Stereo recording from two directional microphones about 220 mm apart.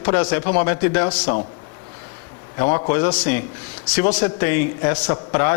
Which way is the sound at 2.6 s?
30° left (ahead or behind).